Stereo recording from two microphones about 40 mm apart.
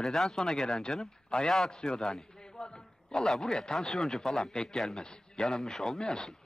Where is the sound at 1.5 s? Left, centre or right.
Centre.